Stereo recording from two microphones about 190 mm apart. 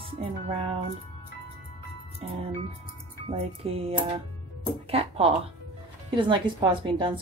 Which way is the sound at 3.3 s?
30° right (ahead or behind).